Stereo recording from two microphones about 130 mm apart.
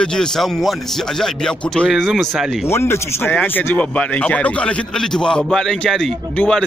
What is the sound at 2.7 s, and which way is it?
A man's voice, 20° left (ahead or behind).